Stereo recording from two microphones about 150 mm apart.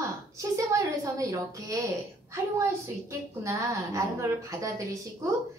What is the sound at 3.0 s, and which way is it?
A woman's voice, 20° right (ahead or behind).